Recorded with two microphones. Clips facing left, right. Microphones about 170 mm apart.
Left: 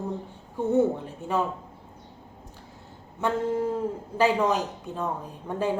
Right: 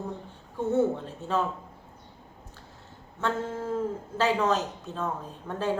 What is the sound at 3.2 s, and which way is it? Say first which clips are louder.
Speech: left 5 dB; 15° left (ahead or behind).